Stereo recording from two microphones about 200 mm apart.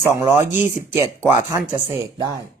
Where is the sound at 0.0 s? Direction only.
15° right (ahead or behind).